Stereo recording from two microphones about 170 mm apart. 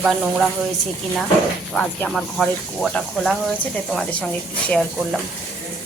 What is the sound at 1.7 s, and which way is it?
A woman's voice, 5° left (ahead or behind).